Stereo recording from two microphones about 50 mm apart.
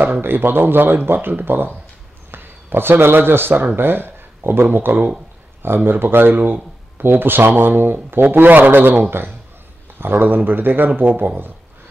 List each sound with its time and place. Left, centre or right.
0.0 s speech: right